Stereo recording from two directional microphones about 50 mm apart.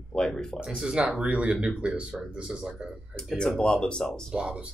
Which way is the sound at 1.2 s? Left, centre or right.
Right.